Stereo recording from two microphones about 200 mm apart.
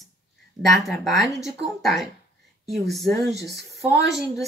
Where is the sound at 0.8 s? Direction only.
Centre (ahead or behind).